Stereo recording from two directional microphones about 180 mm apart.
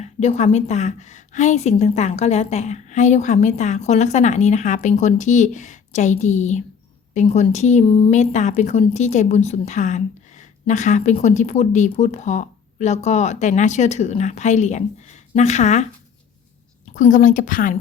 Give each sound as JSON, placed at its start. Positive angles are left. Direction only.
{"t": 0.0, "sound": "speech", "side_deg": 35}
{"t": 16.9, "sound": "a woman's voice", "side_deg": 45}